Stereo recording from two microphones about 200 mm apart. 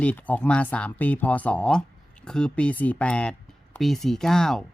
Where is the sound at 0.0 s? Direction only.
5° left (ahead or behind).